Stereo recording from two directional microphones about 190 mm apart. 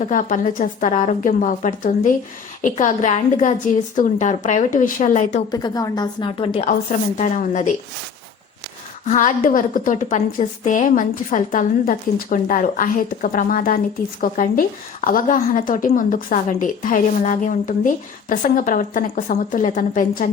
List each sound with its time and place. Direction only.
0.0 s a woman's voice: 45° left (ahead or behind)
5.5 s a woman's voice: 20° left (ahead or behind)
6.7 s a woman's voice: 45° left (ahead or behind)
9.0 s speech: 40° left (ahead or behind)